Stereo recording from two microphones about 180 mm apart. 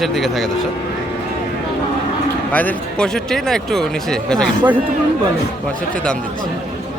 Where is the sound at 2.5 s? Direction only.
10° left (ahead or behind).